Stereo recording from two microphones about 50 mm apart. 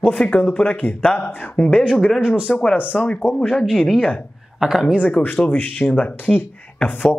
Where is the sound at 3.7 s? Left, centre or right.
Centre.